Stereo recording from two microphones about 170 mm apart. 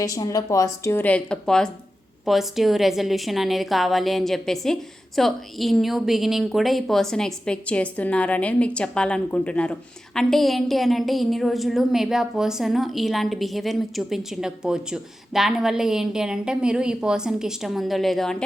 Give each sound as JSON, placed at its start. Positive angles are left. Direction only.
{"t": 0.0, "sound": "a woman's voice", "side_deg": 20}